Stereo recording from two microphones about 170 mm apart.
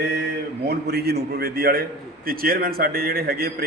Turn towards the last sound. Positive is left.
turn(degrees=-65)  # may be behind; listen again after turning